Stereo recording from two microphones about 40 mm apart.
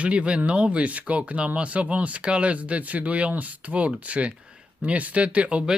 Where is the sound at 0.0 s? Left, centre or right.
Right.